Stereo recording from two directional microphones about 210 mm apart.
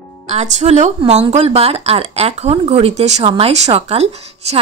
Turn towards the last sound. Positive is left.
turn(degrees=-30)  # may be behind; listen again after turning